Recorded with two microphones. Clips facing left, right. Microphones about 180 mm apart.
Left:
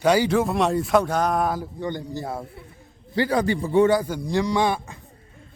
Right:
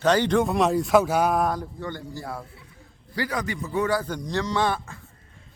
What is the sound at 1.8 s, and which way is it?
A man's voice, 20° left (ahead or behind).